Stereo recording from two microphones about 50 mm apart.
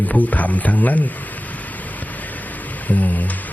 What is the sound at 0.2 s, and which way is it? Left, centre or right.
Speech, left.